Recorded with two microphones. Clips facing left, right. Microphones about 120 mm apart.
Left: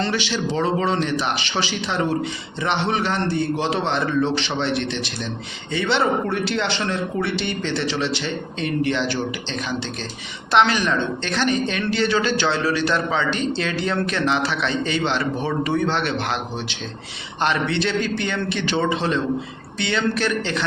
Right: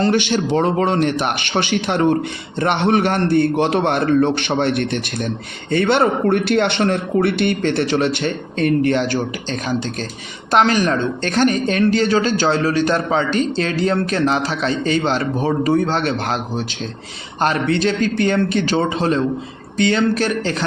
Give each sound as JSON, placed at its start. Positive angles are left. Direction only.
{"t": 0.0, "sound": "a man's voice", "side_deg": -50}